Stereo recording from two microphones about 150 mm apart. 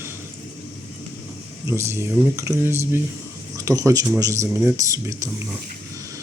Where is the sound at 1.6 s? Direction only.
15° right (ahead or behind).